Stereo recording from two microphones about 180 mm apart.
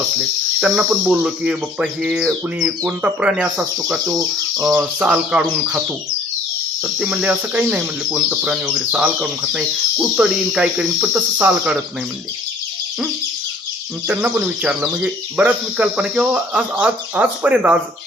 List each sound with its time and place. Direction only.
0.2 s speech: 5° right (ahead or behind)
4.0 s speech: 20° right (ahead or behind)
4.9 s speech: 5° right (ahead or behind)
7.0 s speech: 5° right (ahead or behind)
14.1 s speech: 5° right (ahead or behind)